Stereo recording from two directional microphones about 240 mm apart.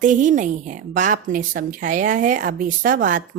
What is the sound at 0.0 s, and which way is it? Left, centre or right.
A woman's voice, right.